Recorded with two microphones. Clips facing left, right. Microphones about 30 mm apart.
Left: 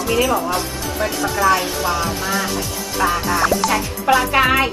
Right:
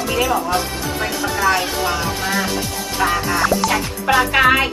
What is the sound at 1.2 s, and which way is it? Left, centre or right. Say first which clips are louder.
Speech: left 1 dB; centre.